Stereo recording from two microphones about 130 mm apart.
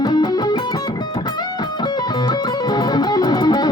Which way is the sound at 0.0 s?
30° left (ahead or behind).